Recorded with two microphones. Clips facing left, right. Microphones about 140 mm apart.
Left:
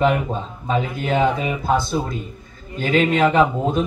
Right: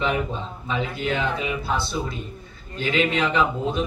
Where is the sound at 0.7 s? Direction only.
45° left (ahead or behind).